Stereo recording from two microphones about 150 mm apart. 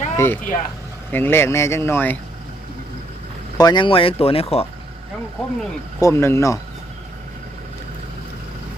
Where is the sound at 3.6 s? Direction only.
30° left (ahead or behind).